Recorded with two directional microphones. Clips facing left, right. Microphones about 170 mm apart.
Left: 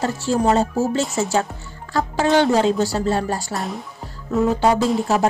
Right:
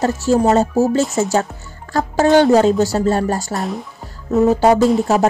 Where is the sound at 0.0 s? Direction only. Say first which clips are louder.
Right 5 dB; 40° right (ahead or behind).